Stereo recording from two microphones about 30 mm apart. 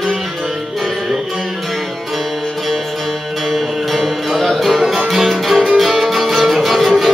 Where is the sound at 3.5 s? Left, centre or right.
Centre.